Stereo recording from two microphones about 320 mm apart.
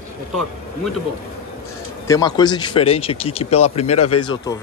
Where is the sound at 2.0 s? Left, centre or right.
Centre.